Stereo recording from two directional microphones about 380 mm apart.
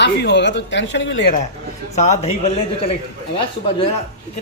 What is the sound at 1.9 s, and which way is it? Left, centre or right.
Speech, centre.